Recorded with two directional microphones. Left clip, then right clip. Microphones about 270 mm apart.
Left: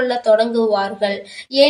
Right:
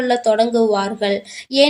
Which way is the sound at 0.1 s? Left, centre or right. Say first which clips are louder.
Right 2 dB; right.